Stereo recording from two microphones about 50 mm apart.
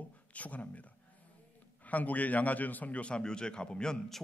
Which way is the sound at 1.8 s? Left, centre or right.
Left.